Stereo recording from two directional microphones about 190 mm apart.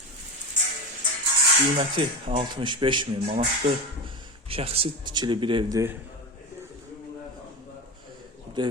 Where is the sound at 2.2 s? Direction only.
25° right (ahead or behind).